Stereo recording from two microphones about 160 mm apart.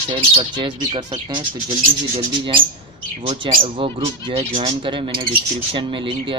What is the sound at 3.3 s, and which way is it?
Speech, 35° right (ahead or behind).